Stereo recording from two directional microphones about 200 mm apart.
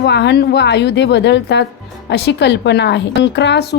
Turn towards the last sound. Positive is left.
turn(degrees=60)  # may be behind; listen again after turning